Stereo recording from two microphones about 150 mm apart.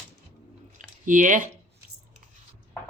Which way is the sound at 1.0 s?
60° right (ahead or behind).